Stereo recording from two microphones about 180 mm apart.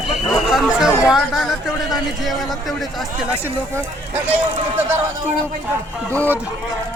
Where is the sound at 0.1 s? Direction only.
Centre (ahead or behind).